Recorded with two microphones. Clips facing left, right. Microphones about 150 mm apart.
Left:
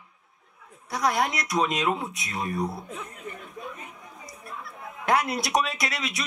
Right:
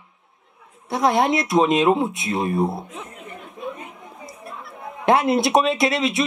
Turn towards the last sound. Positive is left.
turn(degrees=-25)  # may be behind; listen again after turning